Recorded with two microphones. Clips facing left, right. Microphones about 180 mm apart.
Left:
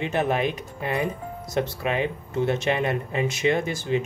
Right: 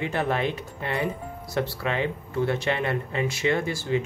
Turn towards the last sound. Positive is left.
turn(degrees=20)  # may be behind; listen again after turning